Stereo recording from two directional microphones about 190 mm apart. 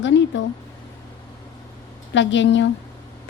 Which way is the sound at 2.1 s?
75° left (ahead or behind).